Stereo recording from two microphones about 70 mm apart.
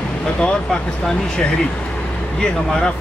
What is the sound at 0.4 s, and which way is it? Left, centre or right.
Speech, centre.